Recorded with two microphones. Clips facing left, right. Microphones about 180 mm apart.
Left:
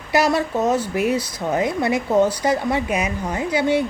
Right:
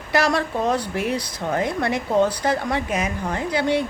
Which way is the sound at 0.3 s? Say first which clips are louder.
Left 2 dB; 5° left (ahead or behind).